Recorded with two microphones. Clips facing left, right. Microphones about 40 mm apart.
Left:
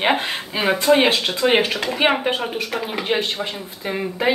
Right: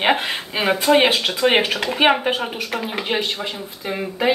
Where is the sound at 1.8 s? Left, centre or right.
Centre.